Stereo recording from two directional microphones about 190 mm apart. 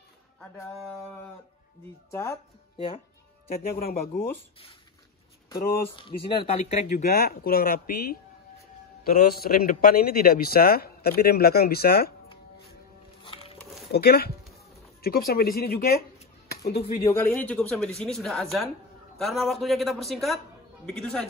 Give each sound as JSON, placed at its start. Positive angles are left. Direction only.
{"t": 0.7, "sound": "a woman's voice", "side_deg": 0}
{"t": 2.0, "sound": "speech", "side_deg": 15}
{"t": 3.4, "sound": "a man's voice", "side_deg": 50}
{"t": 5.9, "sound": "speech", "side_deg": 25}
{"t": 7.0, "sound": "a man's voice", "side_deg": 55}
{"t": 13.2, "sound": "music", "side_deg": 30}
{"t": 13.9, "sound": "a man's voice", "side_deg": 55}
{"t": 17.3, "sound": "a woman's voice", "side_deg": 5}